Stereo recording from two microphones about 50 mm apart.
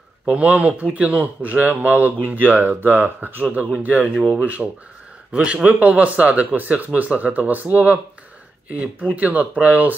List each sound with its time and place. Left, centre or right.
0.2 s speech: right
9.1 s speech: right